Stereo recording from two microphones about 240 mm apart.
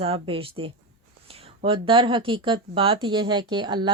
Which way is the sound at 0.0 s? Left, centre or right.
Right.